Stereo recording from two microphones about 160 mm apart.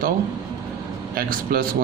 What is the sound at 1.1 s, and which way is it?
Speech, 65° right (ahead or behind).